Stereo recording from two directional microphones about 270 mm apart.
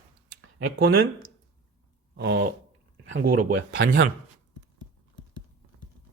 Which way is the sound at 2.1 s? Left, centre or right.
Right.